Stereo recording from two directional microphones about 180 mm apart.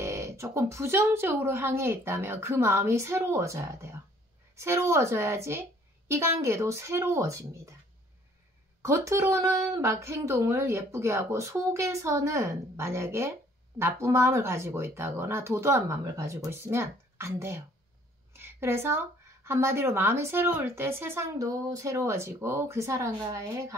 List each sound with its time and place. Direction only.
0.0 s speech: 15° right (ahead or behind)
8.8 s speech: 15° right (ahead or behind)
18.3 s a sound: 10° right (ahead or behind)
19.4 s speech: 15° right (ahead or behind)